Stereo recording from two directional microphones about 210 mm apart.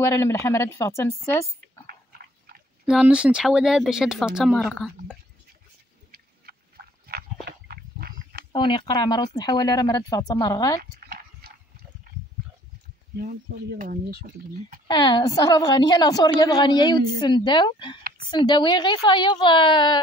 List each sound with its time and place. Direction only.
0.0 s speech: 15° left (ahead or behind)
2.8 s speech: 5° right (ahead or behind)
7.4 s pig: 45° right (ahead or behind)
8.5 s speech: 20° left (ahead or behind)
11.0 s dog: 45° right (ahead or behind)
13.2 s speech: 45° right (ahead or behind)
14.9 s speech: 20° left (ahead or behind)